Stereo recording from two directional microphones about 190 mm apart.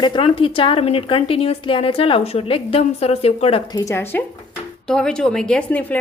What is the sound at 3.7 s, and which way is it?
Speech, 20° left (ahead or behind).